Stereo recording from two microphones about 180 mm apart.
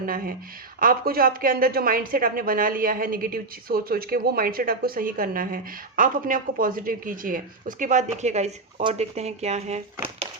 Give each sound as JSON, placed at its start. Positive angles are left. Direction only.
{"t": 0.0, "sound": "speech", "side_deg": -50}